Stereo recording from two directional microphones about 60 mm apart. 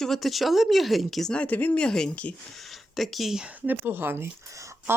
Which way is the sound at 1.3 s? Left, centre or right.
Left.